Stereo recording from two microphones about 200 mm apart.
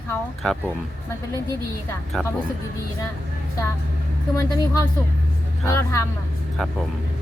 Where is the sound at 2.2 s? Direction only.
Centre (ahead or behind).